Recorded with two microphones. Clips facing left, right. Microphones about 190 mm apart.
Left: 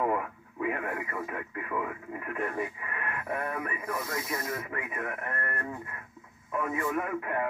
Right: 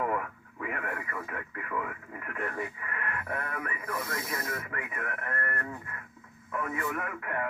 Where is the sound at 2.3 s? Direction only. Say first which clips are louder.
Left 3 dB; 20° left (ahead or behind).